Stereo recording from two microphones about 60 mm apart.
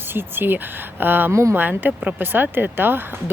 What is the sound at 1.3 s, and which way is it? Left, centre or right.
Speech, right.